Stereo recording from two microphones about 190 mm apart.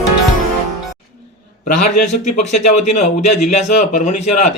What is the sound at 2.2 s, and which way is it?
A man's voice, 40° left (ahead or behind).